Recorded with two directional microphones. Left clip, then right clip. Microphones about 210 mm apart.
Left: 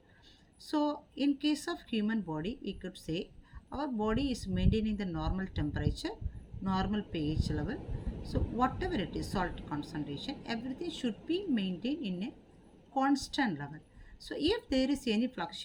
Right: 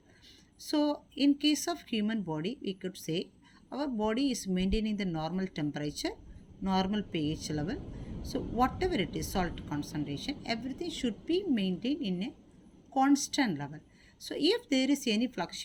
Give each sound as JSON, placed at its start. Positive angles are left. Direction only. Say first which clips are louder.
{"t": 0.7, "sound": "speech", "louder": "right 2 dB", "side_deg": -40}